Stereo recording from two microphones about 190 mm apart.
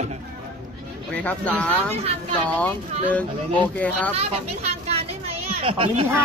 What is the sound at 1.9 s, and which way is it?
Speech, 35° right (ahead or behind).